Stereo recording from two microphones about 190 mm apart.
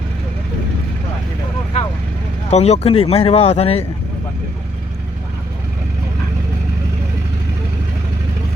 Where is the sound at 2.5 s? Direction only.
35° left (ahead or behind).